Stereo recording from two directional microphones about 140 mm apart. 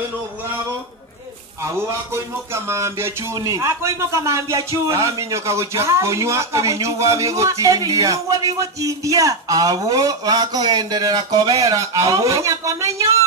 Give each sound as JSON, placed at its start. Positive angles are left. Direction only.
{"t": 1.6, "sound": "speech", "side_deg": -20}